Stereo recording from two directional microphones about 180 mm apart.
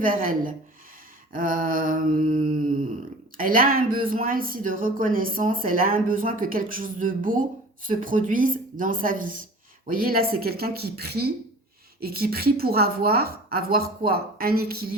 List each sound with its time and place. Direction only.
0.0 s a woman's voice: 50° right (ahead or behind)